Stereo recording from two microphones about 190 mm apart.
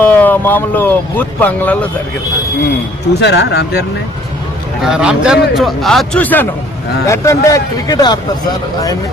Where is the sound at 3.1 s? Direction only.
65° left (ahead or behind).